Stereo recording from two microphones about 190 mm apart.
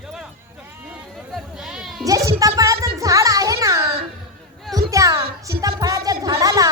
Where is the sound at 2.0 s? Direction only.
15° right (ahead or behind).